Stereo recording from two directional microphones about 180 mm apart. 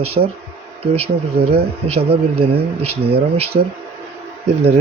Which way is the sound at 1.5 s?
35° right (ahead or behind).